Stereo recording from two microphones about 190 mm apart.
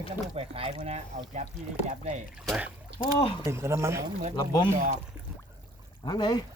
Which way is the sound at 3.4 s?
15° right (ahead or behind).